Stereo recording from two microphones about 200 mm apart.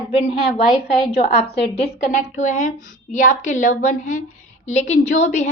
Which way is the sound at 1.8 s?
35° left (ahead or behind).